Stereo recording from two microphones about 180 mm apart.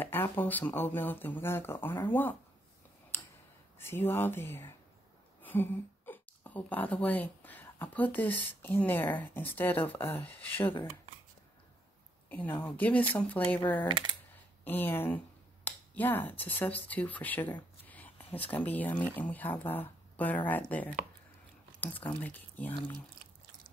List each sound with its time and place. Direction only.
0.0 s speech: 10° left (ahead or behind)
3.7 s speech: 15° left (ahead or behind)
12.3 s speech: 10° left (ahead or behind)
14.6 s speech: 10° left (ahead or behind)